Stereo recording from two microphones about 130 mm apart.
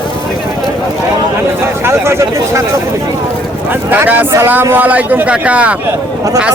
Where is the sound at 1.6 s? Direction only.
20° right (ahead or behind).